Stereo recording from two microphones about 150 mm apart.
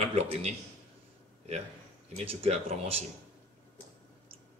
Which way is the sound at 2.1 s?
40° right (ahead or behind).